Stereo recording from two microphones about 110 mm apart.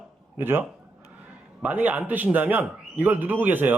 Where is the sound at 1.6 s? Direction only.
15° right (ahead or behind).